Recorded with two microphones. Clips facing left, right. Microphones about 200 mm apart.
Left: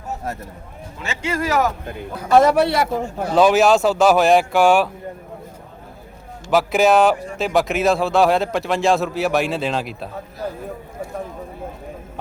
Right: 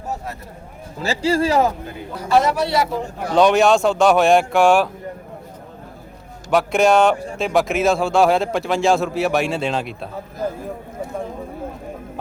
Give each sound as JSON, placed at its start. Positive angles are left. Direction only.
{"t": 0.9, "sound": "speech", "side_deg": -35}
{"t": 2.4, "sound": "a man's voice", "side_deg": 55}
{"t": 3.3, "sound": "a man's voice", "side_deg": 5}
{"t": 6.5, "sound": "a man's voice", "side_deg": 0}